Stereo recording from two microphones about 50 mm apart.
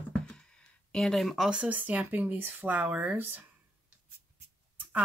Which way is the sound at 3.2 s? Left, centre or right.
Right.